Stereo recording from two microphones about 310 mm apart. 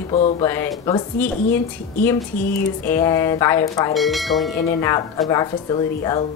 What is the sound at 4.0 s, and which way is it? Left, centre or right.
Speech, centre.